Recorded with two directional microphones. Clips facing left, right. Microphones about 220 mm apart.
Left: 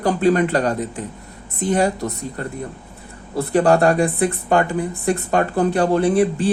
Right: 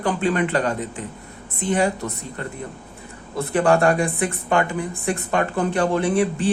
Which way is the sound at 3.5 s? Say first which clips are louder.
Left 3 dB; 35° left (ahead or behind).